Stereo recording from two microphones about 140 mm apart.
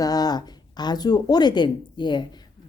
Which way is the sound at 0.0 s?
30° left (ahead or behind).